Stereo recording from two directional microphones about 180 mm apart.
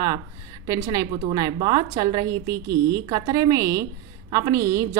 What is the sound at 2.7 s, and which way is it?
Speech, 65° right (ahead or behind).